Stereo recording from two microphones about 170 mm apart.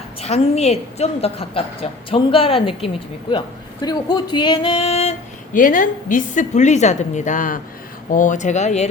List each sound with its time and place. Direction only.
0.2 s a woman's voice: 40° left (ahead or behind)
5.5 s a woman's voice: 50° left (ahead or behind)